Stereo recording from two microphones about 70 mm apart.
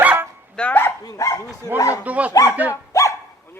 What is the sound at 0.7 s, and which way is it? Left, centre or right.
Speech, left.